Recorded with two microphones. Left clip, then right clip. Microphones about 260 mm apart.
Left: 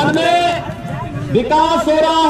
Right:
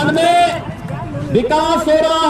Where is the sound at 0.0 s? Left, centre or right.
Right.